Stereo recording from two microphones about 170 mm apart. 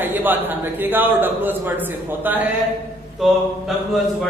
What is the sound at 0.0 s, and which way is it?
A man's voice, 10° right (ahead or behind).